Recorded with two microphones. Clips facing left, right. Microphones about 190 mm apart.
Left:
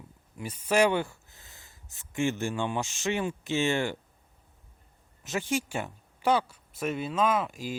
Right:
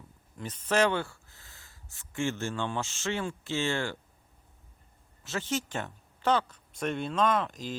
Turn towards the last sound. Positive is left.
turn(degrees=10)  # may be behind; listen again after turning